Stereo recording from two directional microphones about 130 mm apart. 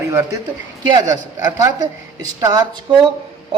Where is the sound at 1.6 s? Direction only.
25° right (ahead or behind).